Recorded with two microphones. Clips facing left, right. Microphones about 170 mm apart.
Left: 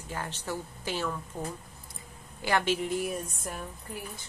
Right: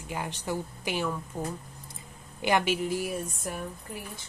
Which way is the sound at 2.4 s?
15° right (ahead or behind).